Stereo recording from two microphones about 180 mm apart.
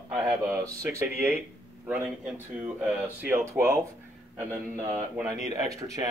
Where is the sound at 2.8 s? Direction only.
10° right (ahead or behind).